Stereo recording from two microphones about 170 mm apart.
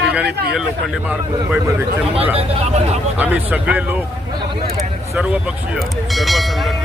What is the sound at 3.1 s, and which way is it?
Speech, 10° right (ahead or behind).